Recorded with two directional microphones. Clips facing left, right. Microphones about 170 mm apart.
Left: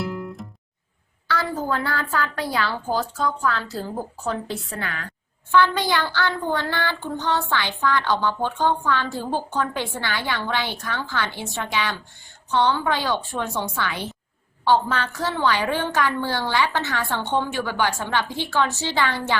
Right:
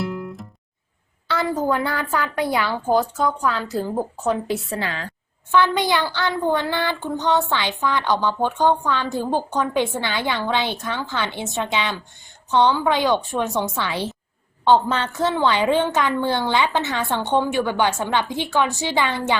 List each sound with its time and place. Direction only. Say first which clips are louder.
0.0 s music: right 1 dB; centre (ahead or behind)
1.3 s child singing: right 4 dB; 20° right (ahead or behind)